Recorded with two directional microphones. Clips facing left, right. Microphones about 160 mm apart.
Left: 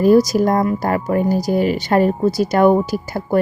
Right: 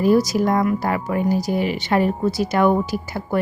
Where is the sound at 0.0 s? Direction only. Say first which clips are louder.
Left 4 dB; 40° left (ahead or behind).